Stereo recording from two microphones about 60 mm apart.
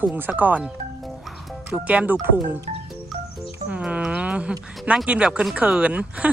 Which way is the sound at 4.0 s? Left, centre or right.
Centre.